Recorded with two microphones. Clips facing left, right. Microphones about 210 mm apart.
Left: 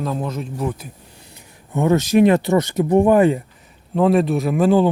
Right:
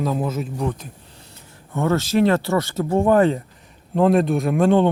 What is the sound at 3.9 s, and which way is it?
Speech, centre (ahead or behind).